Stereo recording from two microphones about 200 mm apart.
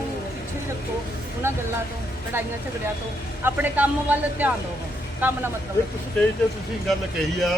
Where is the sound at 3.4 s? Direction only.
10° right (ahead or behind).